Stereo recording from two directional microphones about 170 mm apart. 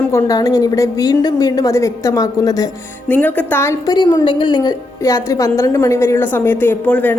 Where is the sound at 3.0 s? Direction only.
10° left (ahead or behind).